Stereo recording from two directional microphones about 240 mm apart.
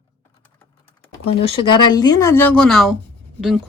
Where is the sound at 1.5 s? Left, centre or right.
Centre.